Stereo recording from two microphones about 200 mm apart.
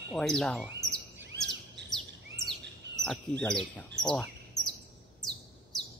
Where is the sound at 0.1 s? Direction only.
Centre (ahead or behind).